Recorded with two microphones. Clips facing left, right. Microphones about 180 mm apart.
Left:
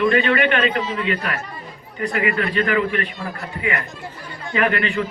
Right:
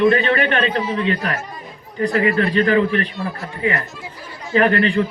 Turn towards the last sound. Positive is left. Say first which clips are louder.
# right 5 dB
turn(degrees=-30)  # may be behind; listen again after turning